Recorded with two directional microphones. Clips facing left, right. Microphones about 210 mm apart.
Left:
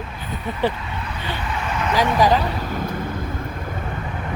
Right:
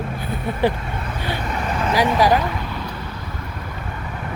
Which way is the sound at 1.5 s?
40° right (ahead or behind).